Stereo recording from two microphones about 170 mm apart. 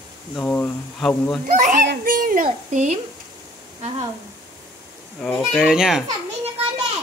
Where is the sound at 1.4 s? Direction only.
50° right (ahead or behind).